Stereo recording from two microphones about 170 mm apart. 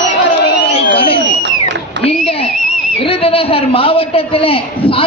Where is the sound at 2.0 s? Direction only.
35° left (ahead or behind).